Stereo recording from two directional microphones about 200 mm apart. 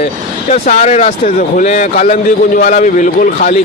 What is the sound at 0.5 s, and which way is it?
A man's voice, 35° left (ahead or behind).